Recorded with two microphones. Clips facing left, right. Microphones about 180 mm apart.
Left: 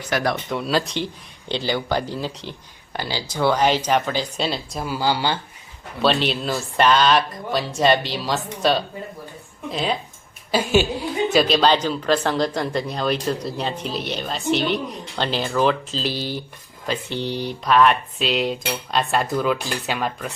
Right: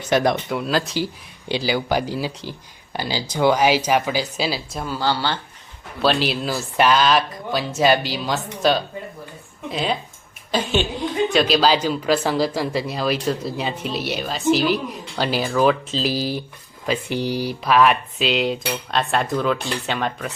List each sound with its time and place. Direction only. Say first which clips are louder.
0.1 s speech: right 4 dB; 20° right (ahead or behind)
0.4 s speech: even; centre (ahead or behind)
4.9 s speech: left 1 dB; 10° left (ahead or behind)
6.0 s speech: even; centre (ahead or behind)